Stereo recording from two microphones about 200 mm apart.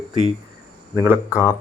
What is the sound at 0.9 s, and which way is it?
Speech, 10° right (ahead or behind).